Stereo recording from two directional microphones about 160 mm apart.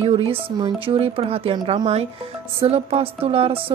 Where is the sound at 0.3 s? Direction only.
35° right (ahead or behind).